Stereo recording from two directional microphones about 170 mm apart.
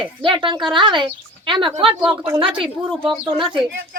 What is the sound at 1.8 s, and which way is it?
Speech, 10° right (ahead or behind).